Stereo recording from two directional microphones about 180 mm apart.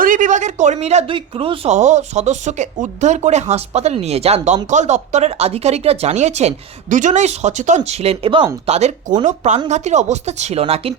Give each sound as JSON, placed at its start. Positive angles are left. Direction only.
{"t": 0.0, "sound": "speech", "side_deg": -45}